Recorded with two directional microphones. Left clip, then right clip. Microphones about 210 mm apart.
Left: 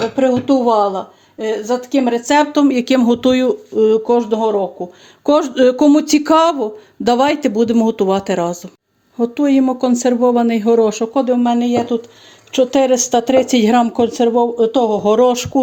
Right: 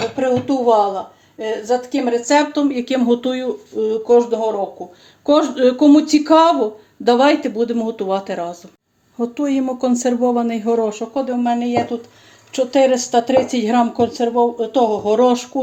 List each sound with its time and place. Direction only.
0.2 s a woman's voice: 45° left (ahead or behind)
9.1 s a woman's voice: 30° left (ahead or behind); by 15.6 s 50° left (ahead or behind)